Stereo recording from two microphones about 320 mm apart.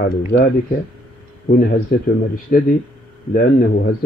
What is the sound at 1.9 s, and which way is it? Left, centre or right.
Speech, left.